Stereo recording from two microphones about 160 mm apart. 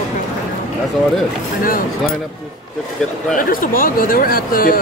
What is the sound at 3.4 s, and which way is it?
Speech, 65° left (ahead or behind).